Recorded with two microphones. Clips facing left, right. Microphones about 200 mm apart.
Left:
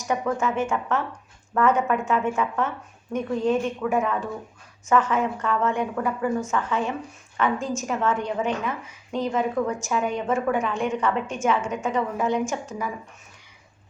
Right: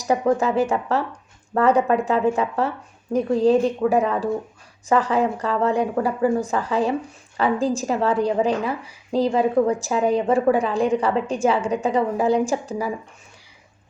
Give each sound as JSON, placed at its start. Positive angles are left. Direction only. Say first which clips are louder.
{"t": 0.0, "sound": "a woman's voice", "louder": "right 5 dB", "side_deg": -35}